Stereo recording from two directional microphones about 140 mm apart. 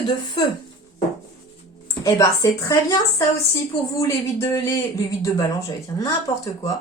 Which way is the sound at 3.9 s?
20° left (ahead or behind).